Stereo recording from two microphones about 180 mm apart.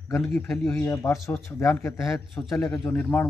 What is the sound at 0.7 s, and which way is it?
Speech, 15° left (ahead or behind).